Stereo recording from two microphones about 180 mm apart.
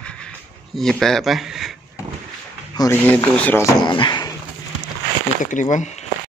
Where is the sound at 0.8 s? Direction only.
Centre (ahead or behind).